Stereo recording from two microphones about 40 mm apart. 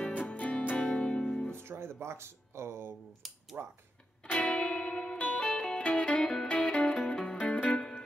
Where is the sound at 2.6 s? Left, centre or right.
Right.